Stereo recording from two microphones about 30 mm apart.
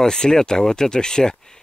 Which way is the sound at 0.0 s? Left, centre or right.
Left.